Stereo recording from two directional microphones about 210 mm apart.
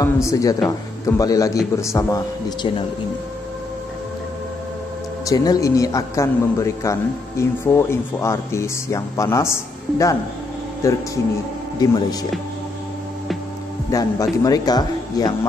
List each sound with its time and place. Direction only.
0.0 s a man's voice: 15° left (ahead or behind)
5.2 s a man's voice: 20° left (ahead or behind)
13.9 s a man's voice: 15° left (ahead or behind)